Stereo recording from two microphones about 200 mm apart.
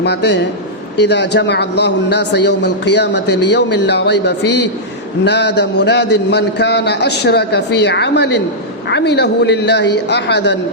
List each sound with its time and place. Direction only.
0.0 s a man's voice: 60° left (ahead or behind)